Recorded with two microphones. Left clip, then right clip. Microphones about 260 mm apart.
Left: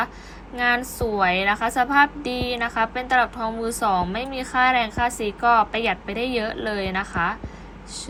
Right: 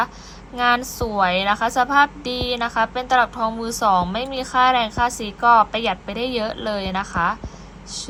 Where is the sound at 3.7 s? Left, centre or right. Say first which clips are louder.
Right 4 dB; centre.